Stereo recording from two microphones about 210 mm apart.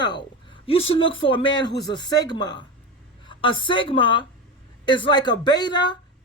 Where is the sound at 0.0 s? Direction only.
20° left (ahead or behind).